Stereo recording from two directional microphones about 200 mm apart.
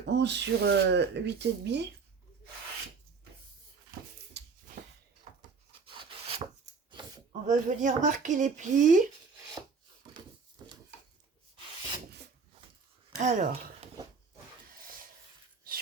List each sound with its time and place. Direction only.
0.0 s speech: 60° right (ahead or behind)
4.4 s a sound: 60° right (ahead or behind)
5.8 s rub: 25° right (ahead or behind)
7.4 s speech: 40° right (ahead or behind)
13.1 s speech: 35° right (ahead or behind)
15.7 s a sound: 45° right (ahead or behind)